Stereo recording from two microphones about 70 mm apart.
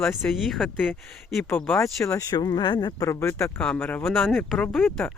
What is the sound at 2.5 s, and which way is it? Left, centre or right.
Speech, left.